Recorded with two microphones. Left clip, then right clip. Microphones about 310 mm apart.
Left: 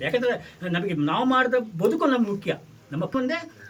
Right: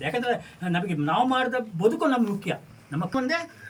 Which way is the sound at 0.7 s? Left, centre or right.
Centre.